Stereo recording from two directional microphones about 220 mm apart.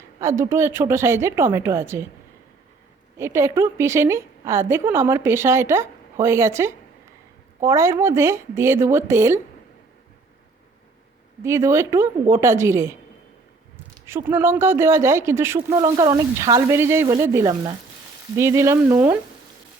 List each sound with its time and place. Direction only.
0.2 s a woman's voice: 10° right (ahead or behind)
3.2 s a woman's voice: 10° right (ahead or behind)
11.4 s a woman's voice: 10° right (ahead or behind)
14.3 s a woman's voice: 10° right (ahead or behind)